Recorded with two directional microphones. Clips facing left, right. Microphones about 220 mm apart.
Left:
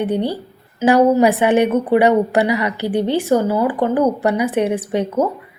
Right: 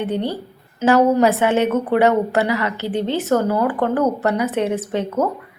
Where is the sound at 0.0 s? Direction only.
15° left (ahead or behind).